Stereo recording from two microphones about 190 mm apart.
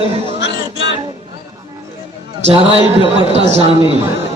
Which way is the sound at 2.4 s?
30° right (ahead or behind).